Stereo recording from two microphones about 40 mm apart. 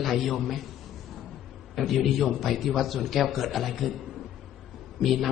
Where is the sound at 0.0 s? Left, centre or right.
Centre.